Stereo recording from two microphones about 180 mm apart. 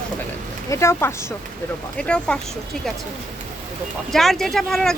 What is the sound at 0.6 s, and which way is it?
Speech, 15° left (ahead or behind).